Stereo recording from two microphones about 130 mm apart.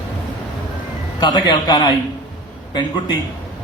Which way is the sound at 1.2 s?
40° left (ahead or behind).